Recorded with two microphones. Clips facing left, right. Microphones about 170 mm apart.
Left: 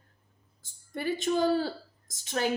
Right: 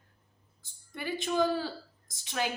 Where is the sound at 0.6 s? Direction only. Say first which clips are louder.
Left 6 dB; 45° left (ahead or behind).